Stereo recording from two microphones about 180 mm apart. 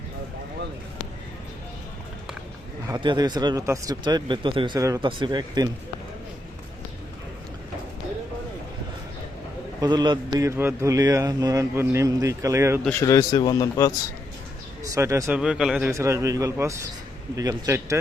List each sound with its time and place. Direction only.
2.9 s speech: 25° right (ahead or behind)
9.8 s a man's voice: 25° right (ahead or behind)
13.0 s a man's voice: 20° left (ahead or behind)
14.9 s a man's voice: 15° right (ahead or behind)
15.4 s speech: 5° right (ahead or behind)
15.9 s a man's voice: 15° right (ahead or behind)